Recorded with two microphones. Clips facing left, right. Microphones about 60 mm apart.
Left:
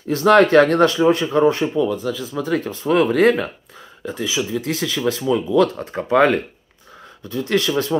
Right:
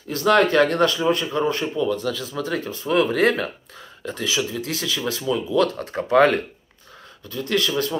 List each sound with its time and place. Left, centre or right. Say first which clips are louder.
0.1 s speech: left 5 dB; left; by 2.4 s centre
2.4 s speech: left 6 dB; left
4.0 s speech: left 2 dB; centre
4.6 s speech: left 4 dB; left